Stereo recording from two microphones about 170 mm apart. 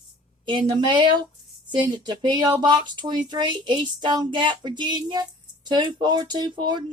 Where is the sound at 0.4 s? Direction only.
25° right (ahead or behind).